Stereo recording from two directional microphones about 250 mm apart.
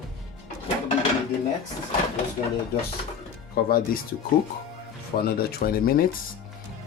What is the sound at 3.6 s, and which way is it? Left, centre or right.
Speech, left.